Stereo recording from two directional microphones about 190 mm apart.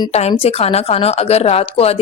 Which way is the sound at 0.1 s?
35° left (ahead or behind).